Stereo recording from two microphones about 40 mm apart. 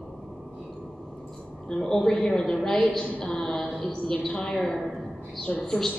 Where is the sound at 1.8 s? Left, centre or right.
Centre.